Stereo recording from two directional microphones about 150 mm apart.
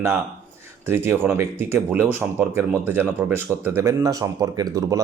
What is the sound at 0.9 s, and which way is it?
Speech, 15° right (ahead or behind).